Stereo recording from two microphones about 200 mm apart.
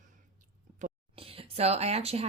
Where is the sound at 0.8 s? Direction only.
30° right (ahead or behind).